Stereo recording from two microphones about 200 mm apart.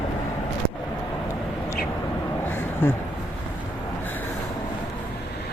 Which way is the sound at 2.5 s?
10° left (ahead or behind).